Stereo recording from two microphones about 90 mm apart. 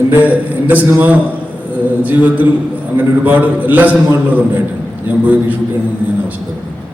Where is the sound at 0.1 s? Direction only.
20° right (ahead or behind).